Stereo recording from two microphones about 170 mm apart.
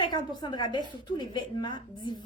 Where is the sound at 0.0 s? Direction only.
25° left (ahead or behind).